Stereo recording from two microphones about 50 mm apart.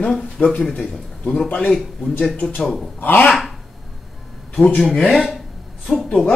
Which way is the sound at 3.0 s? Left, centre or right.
Left.